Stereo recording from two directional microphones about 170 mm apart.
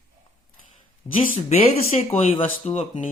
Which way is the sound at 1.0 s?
35° left (ahead or behind).